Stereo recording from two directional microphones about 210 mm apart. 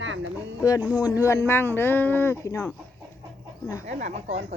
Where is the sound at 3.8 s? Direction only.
35° right (ahead or behind).